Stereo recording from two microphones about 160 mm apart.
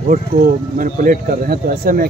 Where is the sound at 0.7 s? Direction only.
60° right (ahead or behind).